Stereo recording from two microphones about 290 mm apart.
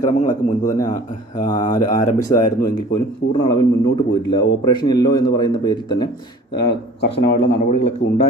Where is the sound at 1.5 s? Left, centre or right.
Centre.